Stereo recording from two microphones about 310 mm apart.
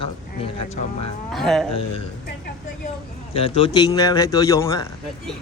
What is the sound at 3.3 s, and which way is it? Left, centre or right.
A man's voice, centre.